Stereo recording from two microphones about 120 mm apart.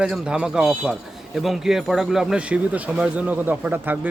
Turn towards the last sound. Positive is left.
turn(degrees=-15)  # may be behind; listen again after turning